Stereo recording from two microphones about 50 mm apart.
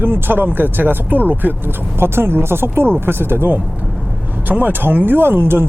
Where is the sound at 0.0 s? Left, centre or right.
Right.